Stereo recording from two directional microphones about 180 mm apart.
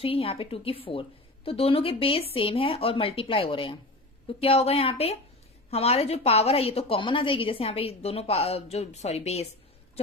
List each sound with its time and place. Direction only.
0.0 s a woman's voice: 30° left (ahead or behind)